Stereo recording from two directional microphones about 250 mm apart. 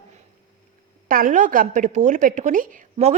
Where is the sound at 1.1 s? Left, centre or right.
Right.